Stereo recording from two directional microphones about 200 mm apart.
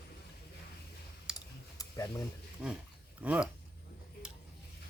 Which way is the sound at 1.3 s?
15° left (ahead or behind).